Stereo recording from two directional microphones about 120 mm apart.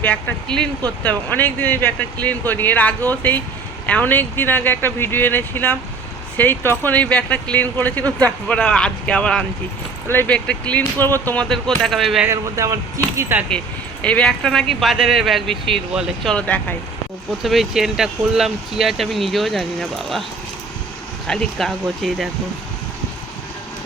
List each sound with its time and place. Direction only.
0.0 s speech: 10° left (ahead or behind)
11.4 s speech: 5° left (ahead or behind)
12.2 s speech: 25° right (ahead or behind)
14.0 s speech: 10° left (ahead or behind); by 16.3 s 5° right (ahead or behind)
16.3 s speech: 10° left (ahead or behind)
17.4 s speech: centre (ahead or behind)
21.2 s speech: 5° left (ahead or behind)